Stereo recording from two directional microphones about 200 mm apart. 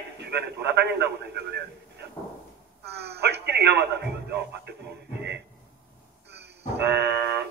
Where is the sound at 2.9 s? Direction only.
55° right (ahead or behind).